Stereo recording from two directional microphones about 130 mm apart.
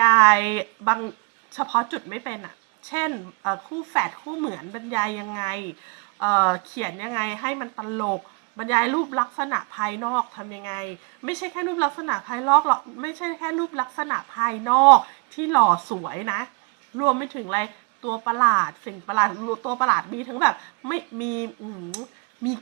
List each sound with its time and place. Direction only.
0.0 s a woman's voice: 20° left (ahead or behind)